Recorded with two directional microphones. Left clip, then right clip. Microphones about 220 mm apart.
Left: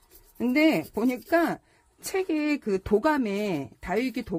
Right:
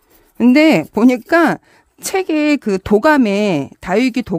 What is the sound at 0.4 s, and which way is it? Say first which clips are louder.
A woman's voice: right 12 dB; 55° right (ahead or behind).